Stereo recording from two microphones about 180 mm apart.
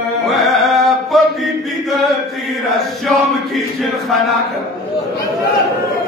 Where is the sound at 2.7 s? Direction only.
Centre (ahead or behind).